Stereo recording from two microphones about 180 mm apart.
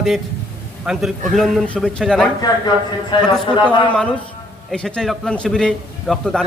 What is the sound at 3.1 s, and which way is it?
Speech, 25° left (ahead or behind).